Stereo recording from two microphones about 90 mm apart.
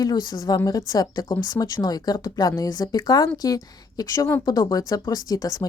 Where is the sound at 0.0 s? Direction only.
45° left (ahead or behind).